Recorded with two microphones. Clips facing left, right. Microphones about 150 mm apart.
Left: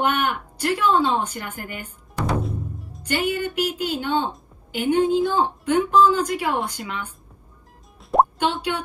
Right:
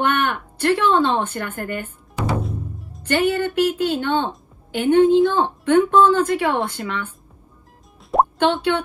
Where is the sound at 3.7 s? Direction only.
50° right (ahead or behind).